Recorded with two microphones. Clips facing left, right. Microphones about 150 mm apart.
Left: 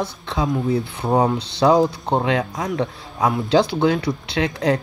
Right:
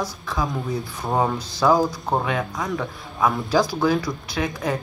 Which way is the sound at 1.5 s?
25° left (ahead or behind).